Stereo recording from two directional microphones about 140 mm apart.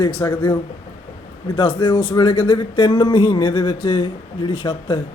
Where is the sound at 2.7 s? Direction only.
35° left (ahead or behind).